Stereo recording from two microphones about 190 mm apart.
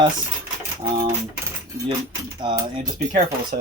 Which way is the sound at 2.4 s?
25° right (ahead or behind).